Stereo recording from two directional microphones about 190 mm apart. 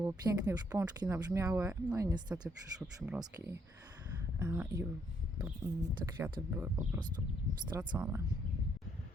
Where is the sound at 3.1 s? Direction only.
15° right (ahead or behind).